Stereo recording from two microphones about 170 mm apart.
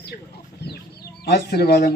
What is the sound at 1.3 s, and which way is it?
Speech, 70° left (ahead or behind).